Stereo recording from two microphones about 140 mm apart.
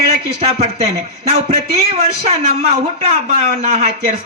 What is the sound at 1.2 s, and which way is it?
A man's voice, 50° right (ahead or behind).